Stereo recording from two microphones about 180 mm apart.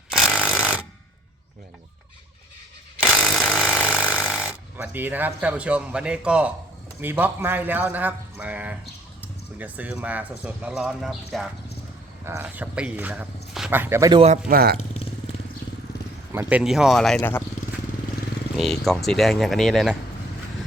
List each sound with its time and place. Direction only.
0.1 s jackhammer: 5° right (ahead or behind)
3.0 s chainsaw: centre (ahead or behind)
4.4 s speech: 10° right (ahead or behind)
12.2 s speech: 10° right (ahead or behind)
14.1 s a man's voice: 30° right (ahead or behind)
14.4 s speech: 55° right (ahead or behind)
16.3 s speech: 10° right (ahead or behind)
17.2 s speech: 10° left (ahead or behind)
18.5 s speech: centre (ahead or behind)